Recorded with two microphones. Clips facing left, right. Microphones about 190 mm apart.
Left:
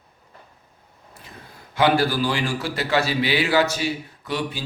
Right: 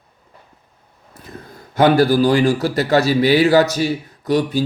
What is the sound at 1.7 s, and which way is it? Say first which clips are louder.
A man's voice: right 7 dB; 45° right (ahead or behind).